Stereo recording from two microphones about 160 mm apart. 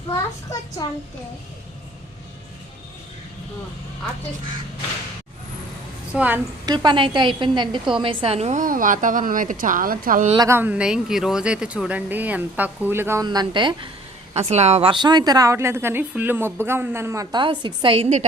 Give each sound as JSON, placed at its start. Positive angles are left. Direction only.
{"t": 6.1, "sound": "speech", "side_deg": -10}
{"t": 6.7, "sound": "a woman's voice", "side_deg": -30}
{"t": 10.3, "sound": "speech", "side_deg": -20}
{"t": 13.2, "sound": "speech", "side_deg": -25}
{"t": 14.3, "sound": "speech", "side_deg": -45}
{"t": 17.3, "sound": "a woman's voice", "side_deg": -30}